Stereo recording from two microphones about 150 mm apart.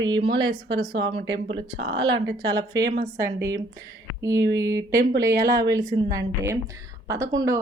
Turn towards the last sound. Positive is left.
turn(degrees=-25)  # may be behind; listen again after turning